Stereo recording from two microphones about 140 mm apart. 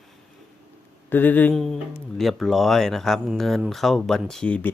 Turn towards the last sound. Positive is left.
turn(degrees=10)  # may be behind; listen again after turning